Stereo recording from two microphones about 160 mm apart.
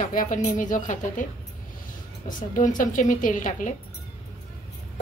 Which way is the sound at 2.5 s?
55° left (ahead or behind).